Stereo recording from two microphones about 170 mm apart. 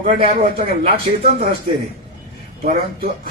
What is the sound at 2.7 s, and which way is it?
Speech, 60° right (ahead or behind).